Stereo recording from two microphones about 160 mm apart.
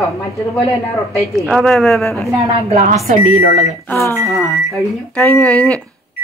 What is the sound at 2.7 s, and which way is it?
Speech, 45° right (ahead or behind).